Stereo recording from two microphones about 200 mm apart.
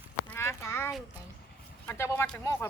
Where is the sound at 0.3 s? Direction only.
15° left (ahead or behind).